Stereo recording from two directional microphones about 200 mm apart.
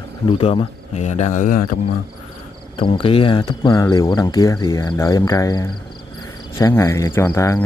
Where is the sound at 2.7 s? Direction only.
25° left (ahead or behind).